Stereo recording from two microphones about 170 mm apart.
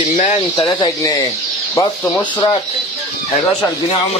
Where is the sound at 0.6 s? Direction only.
25° left (ahead or behind).